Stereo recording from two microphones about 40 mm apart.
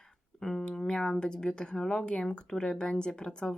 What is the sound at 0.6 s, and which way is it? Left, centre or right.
Speech, centre.